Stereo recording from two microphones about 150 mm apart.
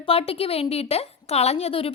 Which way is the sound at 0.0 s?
40° left (ahead or behind).